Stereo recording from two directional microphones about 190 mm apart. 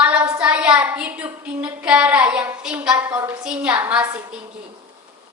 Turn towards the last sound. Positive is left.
turn(degrees=-10)  # may be behind; listen again after turning